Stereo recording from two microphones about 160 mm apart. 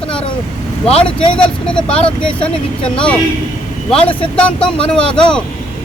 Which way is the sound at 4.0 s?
35° left (ahead or behind).